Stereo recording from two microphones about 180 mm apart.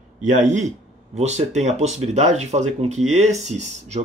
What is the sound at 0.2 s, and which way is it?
Speech, 40° right (ahead or behind).